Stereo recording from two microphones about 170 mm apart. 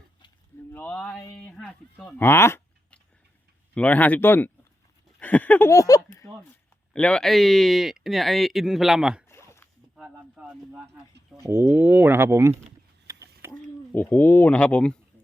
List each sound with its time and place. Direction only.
0.7 s speech: 10° left (ahead or behind)
2.1 s a sound: 15° left (ahead or behind)
3.8 s speech: 10° left (ahead or behind)
6.9 s speech: 5° left (ahead or behind)
9.3 s zipper: 15° left (ahead or behind)
9.9 s speech: 5° right (ahead or behind)
11.3 s speech: 15° right (ahead or behind)
13.1 s a sound: 15° right (ahead or behind)
13.9 s speech: 10° left (ahead or behind)